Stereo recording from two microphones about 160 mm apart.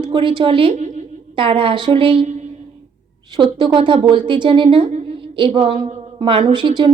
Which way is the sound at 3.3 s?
30° right (ahead or behind).